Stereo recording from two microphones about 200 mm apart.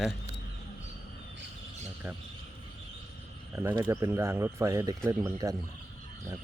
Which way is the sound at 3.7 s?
15° right (ahead or behind).